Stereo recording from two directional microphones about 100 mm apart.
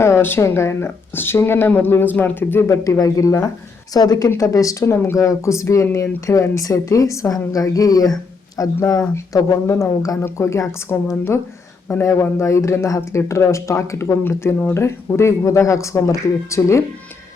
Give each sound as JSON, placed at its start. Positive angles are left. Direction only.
{"t": 0.0, "sound": "speech", "side_deg": 25}
{"t": 2.8, "sound": "speech", "side_deg": 35}